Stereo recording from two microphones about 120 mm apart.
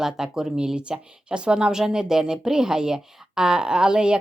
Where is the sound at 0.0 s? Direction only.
5° right (ahead or behind).